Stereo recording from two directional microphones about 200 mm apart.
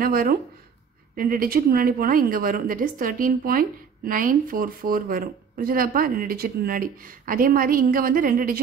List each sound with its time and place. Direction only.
0.0 s speech: 45° right (ahead or behind)